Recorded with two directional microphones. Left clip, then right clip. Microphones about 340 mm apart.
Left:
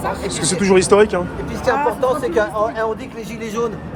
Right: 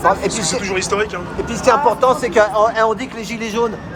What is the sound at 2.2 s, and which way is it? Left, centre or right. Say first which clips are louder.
Speech: right 4 dB; right.